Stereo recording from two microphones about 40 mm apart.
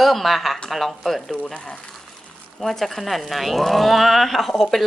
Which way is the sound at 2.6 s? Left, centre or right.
Centre.